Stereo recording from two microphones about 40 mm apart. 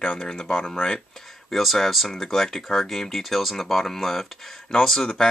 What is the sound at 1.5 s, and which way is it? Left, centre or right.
Speech, centre.